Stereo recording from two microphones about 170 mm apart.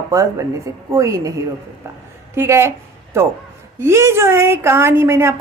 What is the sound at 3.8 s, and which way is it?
A woman's voice, 15° right (ahead or behind).